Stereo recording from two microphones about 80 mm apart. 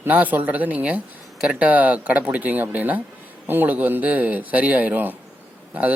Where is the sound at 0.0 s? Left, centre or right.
Right.